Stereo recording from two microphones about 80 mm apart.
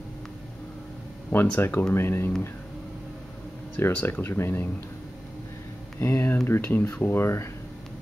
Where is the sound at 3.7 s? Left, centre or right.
Left.